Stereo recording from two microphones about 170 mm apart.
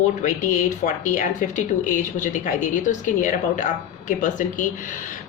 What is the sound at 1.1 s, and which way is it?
Speech, 50° left (ahead or behind).